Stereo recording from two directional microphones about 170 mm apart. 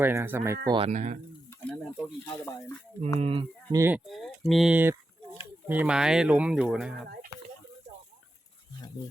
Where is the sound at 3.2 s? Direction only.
35° right (ahead or behind).